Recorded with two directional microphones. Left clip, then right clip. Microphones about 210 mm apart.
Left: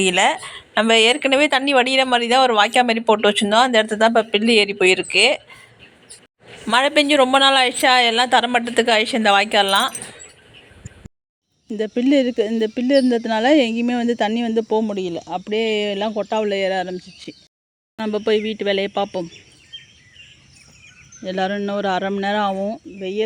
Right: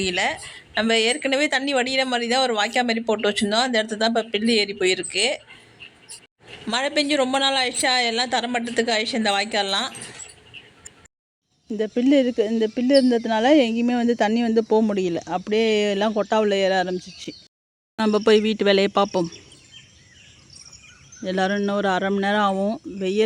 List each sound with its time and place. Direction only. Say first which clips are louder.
0.2 s speech: left 7 dB; 5° left (ahead or behind)
6.7 s speech: left 7 dB; 5° left (ahead or behind)
11.7 s speech: left 2 dB; 5° left (ahead or behind); by 19.3 s 20° right (ahead or behind)
21.2 s speech: even; 10° right (ahead or behind)